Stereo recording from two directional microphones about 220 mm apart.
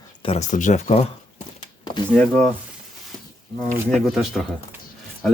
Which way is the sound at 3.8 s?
Centre (ahead or behind).